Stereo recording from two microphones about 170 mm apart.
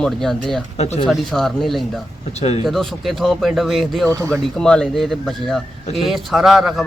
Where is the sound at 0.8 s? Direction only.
40° left (ahead or behind).